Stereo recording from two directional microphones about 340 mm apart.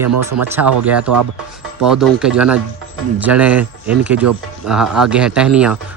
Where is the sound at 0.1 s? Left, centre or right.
Right.